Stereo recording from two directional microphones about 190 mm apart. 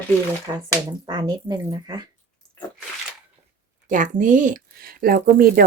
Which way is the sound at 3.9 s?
40° right (ahead or behind).